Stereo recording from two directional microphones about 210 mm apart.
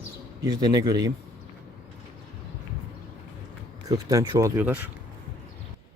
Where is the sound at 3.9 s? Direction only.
15° right (ahead or behind).